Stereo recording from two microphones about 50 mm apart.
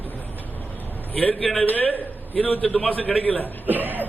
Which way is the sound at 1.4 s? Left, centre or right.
Centre.